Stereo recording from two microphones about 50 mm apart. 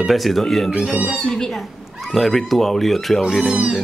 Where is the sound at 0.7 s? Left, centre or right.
Centre.